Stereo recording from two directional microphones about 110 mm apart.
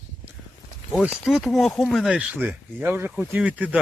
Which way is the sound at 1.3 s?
Centre (ahead or behind).